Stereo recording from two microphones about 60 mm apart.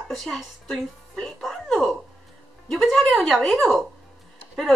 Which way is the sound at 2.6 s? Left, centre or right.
Centre.